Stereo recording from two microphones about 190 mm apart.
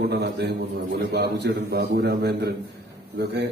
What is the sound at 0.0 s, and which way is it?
A man's voice, 60° right (ahead or behind).